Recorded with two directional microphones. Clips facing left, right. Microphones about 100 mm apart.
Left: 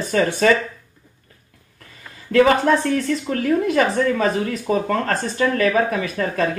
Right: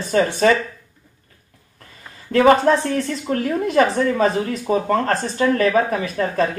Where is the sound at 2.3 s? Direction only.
30° right (ahead or behind).